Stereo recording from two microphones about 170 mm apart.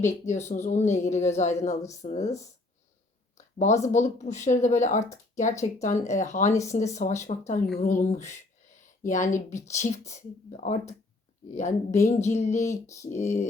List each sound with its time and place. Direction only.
0.1 s a woman's voice: 40° left (ahead or behind)
3.3 s a sound: 45° left (ahead or behind)
3.8 s a woman's voice: 45° left (ahead or behind)
6.5 s speech: 20° left (ahead or behind)
6.7 s a woman's voice: 45° left (ahead or behind)
12.7 s a sound: 15° left (ahead or behind)
13.1 s a woman's voice: 45° left (ahead or behind)